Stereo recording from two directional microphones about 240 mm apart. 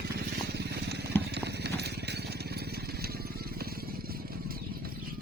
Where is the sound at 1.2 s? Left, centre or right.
Right.